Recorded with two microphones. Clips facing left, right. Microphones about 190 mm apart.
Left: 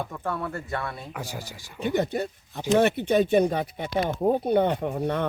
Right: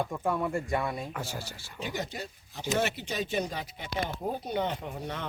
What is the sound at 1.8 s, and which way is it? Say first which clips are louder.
Speech: left 10 dB; 55° left (ahead or behind).